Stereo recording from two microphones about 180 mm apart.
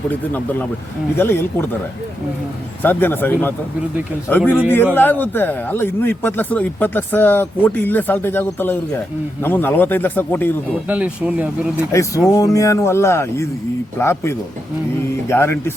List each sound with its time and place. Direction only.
0.1 s speech: 10° left (ahead or behind)
2.8 s speech: 10° left (ahead or behind)
10.8 s speech: 5° right (ahead or behind)
11.9 s speech: 15° left (ahead or behind)